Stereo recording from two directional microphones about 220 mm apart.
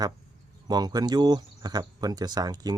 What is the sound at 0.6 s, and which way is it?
Speech, 20° right (ahead or behind).